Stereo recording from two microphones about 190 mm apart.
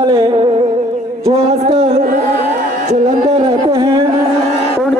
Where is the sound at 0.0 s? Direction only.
25° right (ahead or behind).